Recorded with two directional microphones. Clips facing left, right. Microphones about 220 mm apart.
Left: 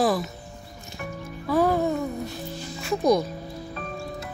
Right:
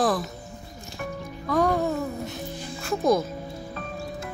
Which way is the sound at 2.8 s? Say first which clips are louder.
Left 1 dB; centre (ahead or behind).